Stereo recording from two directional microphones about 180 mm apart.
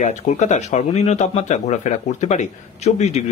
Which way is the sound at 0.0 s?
40° left (ahead or behind).